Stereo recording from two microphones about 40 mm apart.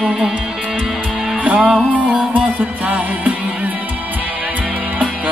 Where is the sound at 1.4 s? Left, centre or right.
Right.